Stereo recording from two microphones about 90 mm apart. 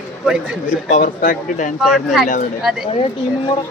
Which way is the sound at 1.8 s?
5° right (ahead or behind).